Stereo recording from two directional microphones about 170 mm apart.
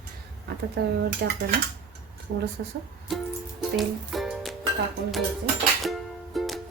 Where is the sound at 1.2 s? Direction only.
90° right.